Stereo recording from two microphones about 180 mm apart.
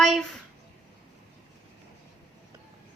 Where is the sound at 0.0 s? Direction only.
Centre (ahead or behind).